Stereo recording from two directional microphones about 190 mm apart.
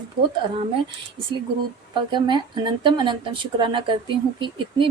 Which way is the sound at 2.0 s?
25° right (ahead or behind).